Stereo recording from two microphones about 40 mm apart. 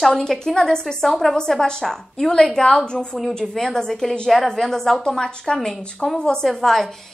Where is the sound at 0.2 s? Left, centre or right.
Centre.